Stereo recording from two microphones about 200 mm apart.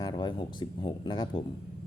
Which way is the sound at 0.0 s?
20° left (ahead or behind).